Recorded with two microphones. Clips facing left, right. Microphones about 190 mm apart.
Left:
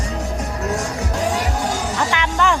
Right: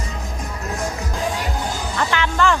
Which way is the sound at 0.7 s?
80° left.